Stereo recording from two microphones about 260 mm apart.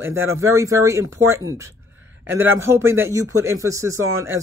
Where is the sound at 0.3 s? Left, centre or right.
Centre.